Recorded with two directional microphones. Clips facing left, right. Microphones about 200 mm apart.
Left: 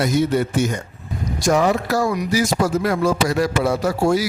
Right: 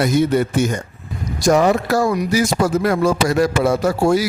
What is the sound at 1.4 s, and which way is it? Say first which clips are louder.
Speech: right 3 dB; 40° right (ahead or behind).